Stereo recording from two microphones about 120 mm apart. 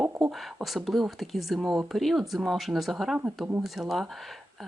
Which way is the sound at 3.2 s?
10° right (ahead or behind).